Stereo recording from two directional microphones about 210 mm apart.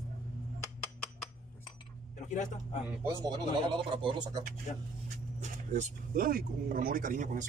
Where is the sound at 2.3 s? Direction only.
35° left (ahead or behind).